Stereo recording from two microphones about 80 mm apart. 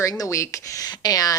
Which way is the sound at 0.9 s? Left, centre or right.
Left.